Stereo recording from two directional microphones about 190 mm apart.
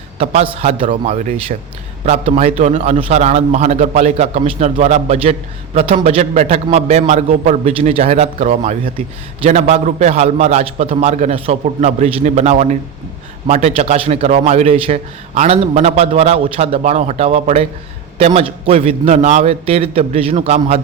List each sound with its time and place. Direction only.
0.2 s a man's voice: 30° right (ahead or behind)